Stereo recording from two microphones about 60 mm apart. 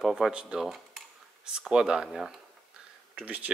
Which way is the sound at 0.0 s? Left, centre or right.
Centre.